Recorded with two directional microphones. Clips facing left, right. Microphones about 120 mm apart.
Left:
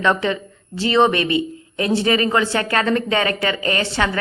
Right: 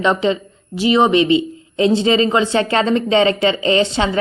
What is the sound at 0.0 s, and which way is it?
Speech, 20° right (ahead or behind).